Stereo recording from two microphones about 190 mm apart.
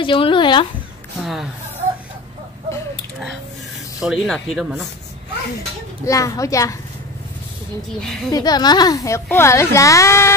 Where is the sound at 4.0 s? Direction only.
Centre (ahead or behind).